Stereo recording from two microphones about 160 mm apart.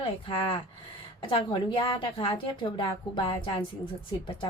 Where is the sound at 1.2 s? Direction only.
30° left (ahead or behind).